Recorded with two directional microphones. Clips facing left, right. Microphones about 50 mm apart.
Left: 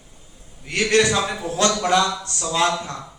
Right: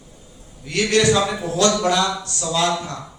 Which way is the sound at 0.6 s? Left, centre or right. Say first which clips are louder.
Right 1 dB; left.